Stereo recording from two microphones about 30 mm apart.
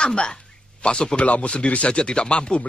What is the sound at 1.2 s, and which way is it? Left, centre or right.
A woman's voice, left.